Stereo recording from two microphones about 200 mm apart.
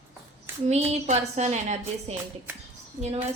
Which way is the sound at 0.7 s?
35° right (ahead or behind).